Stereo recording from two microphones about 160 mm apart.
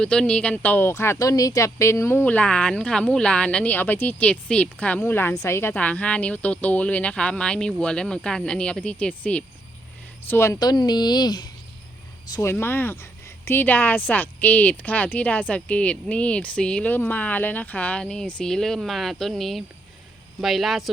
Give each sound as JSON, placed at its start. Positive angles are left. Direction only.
{"t": 0.0, "sound": "speech", "side_deg": 5}